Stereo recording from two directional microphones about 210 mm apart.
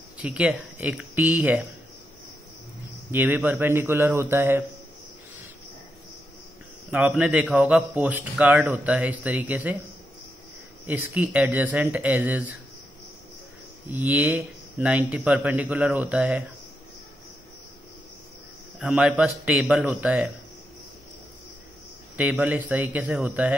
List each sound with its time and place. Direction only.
0.2 s a man's voice: 5° right (ahead or behind)
3.1 s a man's voice: 10° right (ahead or behind)
6.9 s a man's voice: 5° right (ahead or behind)
10.9 s a man's voice: 10° right (ahead or behind)
13.9 s a man's voice: 10° right (ahead or behind)
18.8 s speech: 5° right (ahead or behind)
22.1 s a man's voice: 5° right (ahead or behind)